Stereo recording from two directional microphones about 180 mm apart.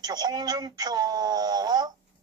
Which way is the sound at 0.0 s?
20° right (ahead or behind).